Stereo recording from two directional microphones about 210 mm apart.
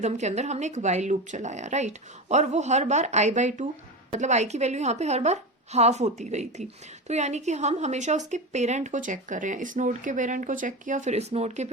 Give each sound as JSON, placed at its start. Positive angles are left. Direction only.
{"t": 0.0, "sound": "a woman's voice", "side_deg": -35}